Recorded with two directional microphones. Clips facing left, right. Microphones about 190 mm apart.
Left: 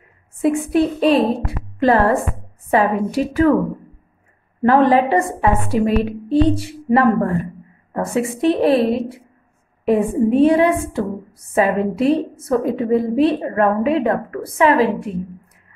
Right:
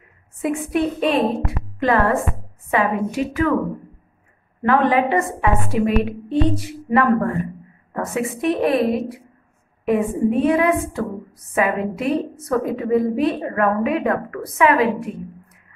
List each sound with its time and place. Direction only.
0.4 s a woman's voice: 30° left (ahead or behind)
4.6 s a woman's voice: 35° left (ahead or behind)